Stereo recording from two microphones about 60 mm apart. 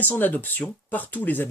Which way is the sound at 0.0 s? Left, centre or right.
Left.